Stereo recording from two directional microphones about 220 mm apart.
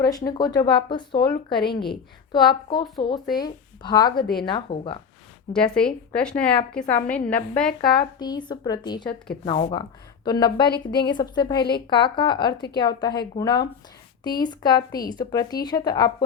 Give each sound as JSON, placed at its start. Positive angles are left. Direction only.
{"t": 0.3, "sound": "speech", "side_deg": 20}
{"t": 5.5, "sound": "a woman's voice", "side_deg": 5}
{"t": 8.2, "sound": "speech", "side_deg": 20}